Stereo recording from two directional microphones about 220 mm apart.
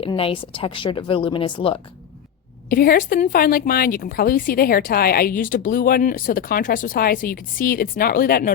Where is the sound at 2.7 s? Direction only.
40° left (ahead or behind).